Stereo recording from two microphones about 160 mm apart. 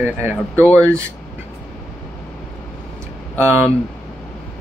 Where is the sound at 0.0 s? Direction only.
15° right (ahead or behind).